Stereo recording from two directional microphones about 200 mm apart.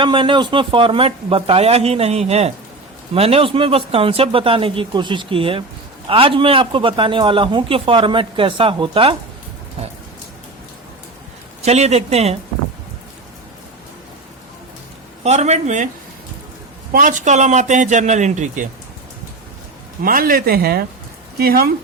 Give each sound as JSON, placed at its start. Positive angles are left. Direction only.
{"t": 0.0, "sound": "a man's voice", "side_deg": -25}
{"t": 11.6, "sound": "a man's voice", "side_deg": -35}
{"t": 15.2, "sound": "a man's voice", "side_deg": -35}
{"t": 16.9, "sound": "a man's voice", "side_deg": -40}
{"t": 20.0, "sound": "speech", "side_deg": -45}